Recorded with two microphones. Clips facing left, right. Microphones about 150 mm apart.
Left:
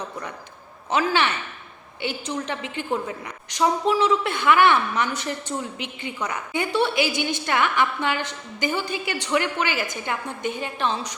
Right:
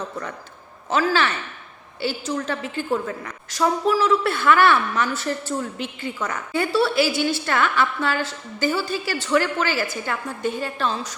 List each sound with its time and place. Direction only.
0.9 s a woman's voice: 15° left (ahead or behind)